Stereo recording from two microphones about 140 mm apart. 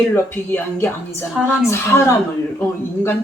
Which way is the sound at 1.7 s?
20° left (ahead or behind).